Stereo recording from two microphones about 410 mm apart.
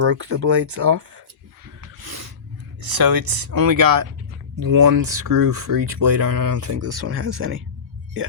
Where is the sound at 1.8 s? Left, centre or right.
Right.